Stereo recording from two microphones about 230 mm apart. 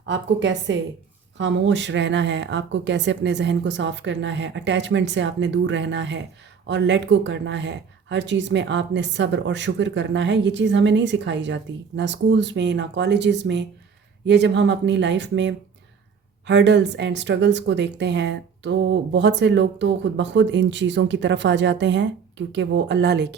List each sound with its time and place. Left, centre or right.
0.1 s speech: right